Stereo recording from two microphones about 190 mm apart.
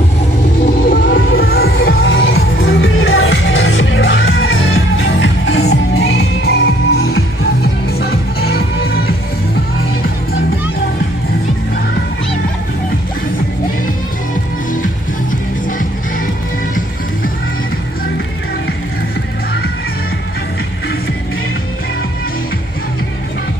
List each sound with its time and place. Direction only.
0.8 s music: 50° left (ahead or behind); by 7.2 s 90° left
8.0 s music: 55° left (ahead or behind)